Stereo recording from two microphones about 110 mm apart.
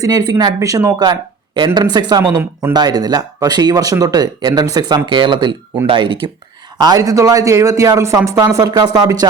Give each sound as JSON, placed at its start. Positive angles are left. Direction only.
{"t": 0.0, "sound": "speech", "side_deg": -35}
{"t": 6.7, "sound": "speech", "side_deg": -35}